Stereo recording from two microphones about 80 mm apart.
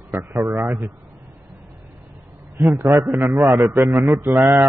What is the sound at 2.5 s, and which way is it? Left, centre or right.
A man's voice, right.